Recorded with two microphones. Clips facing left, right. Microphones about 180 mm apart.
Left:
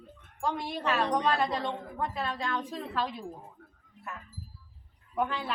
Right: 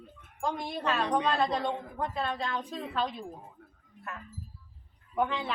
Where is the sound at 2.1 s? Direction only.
Centre (ahead or behind).